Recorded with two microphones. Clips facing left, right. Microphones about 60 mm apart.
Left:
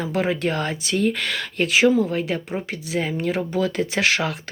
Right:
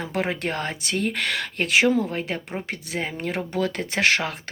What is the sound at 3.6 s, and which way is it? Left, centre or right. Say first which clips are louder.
Speech: even; right.